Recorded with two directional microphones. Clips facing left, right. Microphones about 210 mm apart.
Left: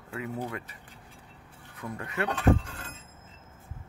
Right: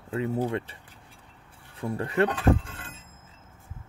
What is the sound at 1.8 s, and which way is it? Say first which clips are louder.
Speech: right 8 dB; 30° right (ahead or behind).